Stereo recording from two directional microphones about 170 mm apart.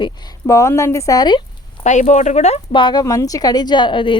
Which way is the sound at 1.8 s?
45° left (ahead or behind).